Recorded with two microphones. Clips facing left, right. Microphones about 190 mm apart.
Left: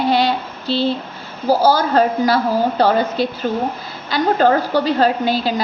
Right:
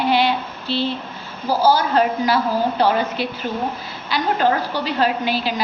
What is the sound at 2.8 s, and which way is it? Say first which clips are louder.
A woman's voice: left 3 dB; 40° left (ahead or behind).